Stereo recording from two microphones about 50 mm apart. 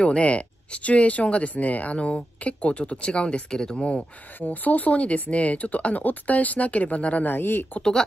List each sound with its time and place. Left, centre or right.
0.0 s speech: left
4.4 s speech: left